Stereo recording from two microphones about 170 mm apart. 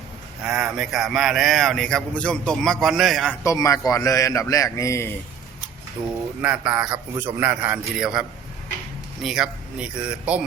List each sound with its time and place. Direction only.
0.4 s speech: 5° right (ahead or behind)
3.4 s a man's voice: 20° left (ahead or behind)
6.4 s a man's voice: 5° right (ahead or behind)